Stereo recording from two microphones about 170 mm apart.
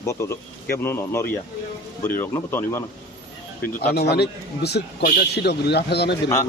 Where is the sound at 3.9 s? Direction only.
70° left (ahead or behind).